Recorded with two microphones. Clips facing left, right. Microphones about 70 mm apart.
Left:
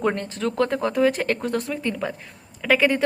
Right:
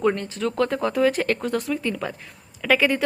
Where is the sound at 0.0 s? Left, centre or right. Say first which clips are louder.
Right 1 dB; left; by 2.8 s centre.